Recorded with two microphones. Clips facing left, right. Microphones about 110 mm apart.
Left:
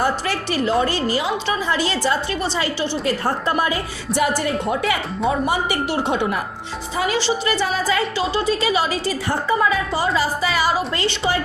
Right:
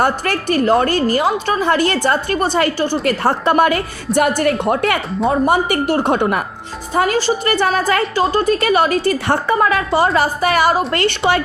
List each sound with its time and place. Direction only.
0.0 s a woman's voice: 50° right (ahead or behind)